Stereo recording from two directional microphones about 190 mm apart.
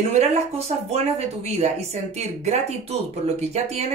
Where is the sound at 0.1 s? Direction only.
35° right (ahead or behind).